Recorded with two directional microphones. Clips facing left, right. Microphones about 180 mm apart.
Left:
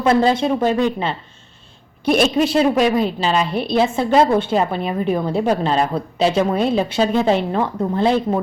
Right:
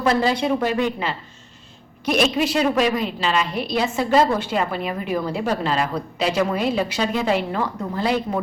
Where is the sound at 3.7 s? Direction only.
25° left (ahead or behind).